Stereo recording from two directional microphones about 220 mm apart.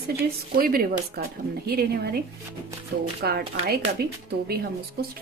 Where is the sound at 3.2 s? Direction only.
45° right (ahead or behind).